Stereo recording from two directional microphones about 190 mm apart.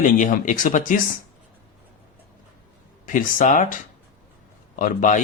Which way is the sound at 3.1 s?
45° left (ahead or behind).